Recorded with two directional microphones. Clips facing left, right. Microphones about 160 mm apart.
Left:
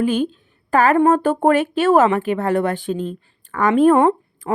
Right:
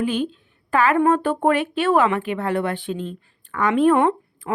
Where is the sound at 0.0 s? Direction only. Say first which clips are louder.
Left 4 dB; 45° left (ahead or behind).